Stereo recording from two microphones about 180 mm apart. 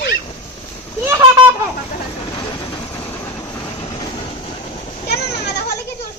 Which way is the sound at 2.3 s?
25° left (ahead or behind).